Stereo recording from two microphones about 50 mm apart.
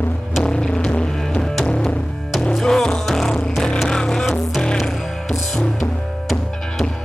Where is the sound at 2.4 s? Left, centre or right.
Centre.